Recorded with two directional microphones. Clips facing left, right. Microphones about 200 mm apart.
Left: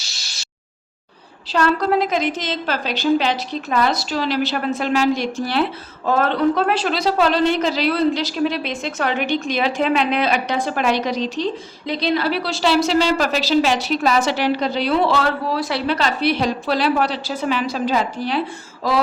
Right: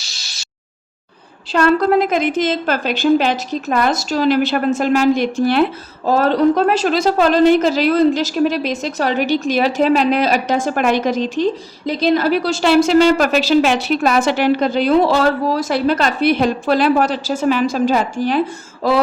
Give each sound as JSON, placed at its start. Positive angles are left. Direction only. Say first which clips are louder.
{"t": 1.5, "sound": "a woman's voice", "louder": "right 4 dB", "side_deg": -55}
{"t": 6.1, "sound": "a woman's voice", "louder": "right 4 dB", "side_deg": -35}